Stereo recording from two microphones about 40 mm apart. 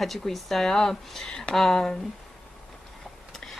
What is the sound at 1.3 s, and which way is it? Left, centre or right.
Speech, left.